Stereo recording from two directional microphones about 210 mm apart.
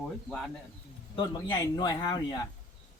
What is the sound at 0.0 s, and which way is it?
Speech, 5° left (ahead or behind).